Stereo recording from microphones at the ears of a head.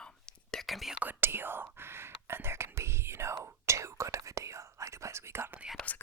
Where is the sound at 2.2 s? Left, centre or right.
Right.